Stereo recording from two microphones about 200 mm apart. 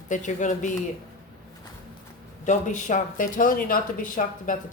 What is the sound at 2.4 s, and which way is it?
A woman's voice, 40° left (ahead or behind).